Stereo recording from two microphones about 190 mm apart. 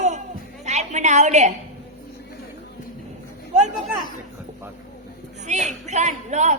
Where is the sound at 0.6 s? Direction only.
35° right (ahead or behind).